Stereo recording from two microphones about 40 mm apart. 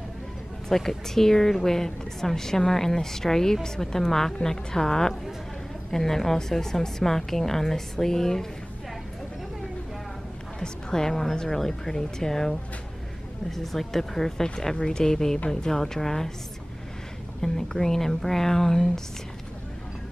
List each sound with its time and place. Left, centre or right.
0.7 s a woman's voice: centre
10.6 s a woman's voice: centre
17.4 s a woman's voice: centre